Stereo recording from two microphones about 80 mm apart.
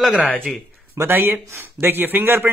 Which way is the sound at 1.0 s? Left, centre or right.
Right.